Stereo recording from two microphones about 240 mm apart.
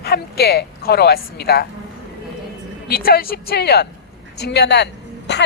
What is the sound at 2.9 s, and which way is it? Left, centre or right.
A woman's voice, left.